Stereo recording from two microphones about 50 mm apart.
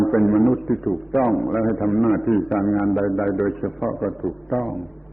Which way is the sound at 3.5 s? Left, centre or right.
Left.